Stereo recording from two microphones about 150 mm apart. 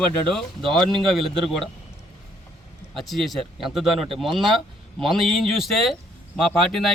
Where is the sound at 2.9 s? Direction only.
Centre (ahead or behind).